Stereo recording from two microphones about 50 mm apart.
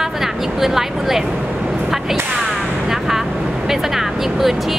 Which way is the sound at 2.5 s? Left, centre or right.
Centre.